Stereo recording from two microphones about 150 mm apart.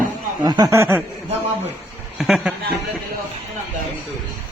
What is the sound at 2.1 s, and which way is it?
Speech, centre (ahead or behind).